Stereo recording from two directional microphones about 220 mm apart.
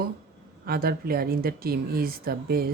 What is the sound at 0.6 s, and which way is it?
Speech, 45° right (ahead or behind).